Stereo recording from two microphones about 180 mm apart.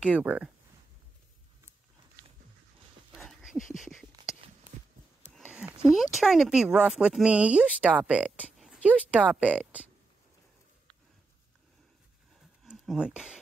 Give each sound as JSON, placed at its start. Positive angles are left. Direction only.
{"t": 0.0, "sound": "speech", "side_deg": -5}
{"t": 3.1, "sound": "a sound", "side_deg": 0}
{"t": 3.6, "sound": "speech", "side_deg": 45}
{"t": 5.3, "sound": "speech", "side_deg": -5}
{"t": 12.6, "sound": "speech", "side_deg": -5}